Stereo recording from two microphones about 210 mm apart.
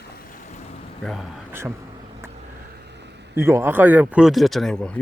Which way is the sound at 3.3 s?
10° right (ahead or behind).